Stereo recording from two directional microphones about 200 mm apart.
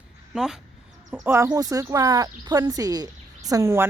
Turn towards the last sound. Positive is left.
turn(degrees=-15)  # may be behind; listen again after turning